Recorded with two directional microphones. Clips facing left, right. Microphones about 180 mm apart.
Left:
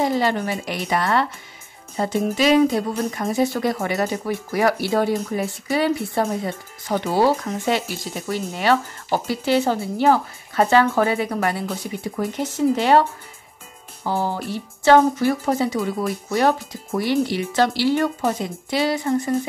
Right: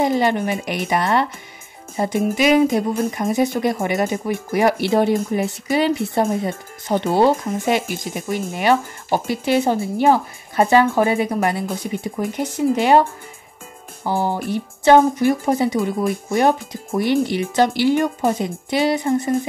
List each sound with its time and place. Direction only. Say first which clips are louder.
0.0 s speech: right 2 dB; 20° right (ahead or behind)